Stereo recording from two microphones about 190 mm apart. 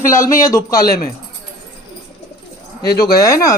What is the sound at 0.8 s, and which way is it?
Speech, 50° left (ahead or behind).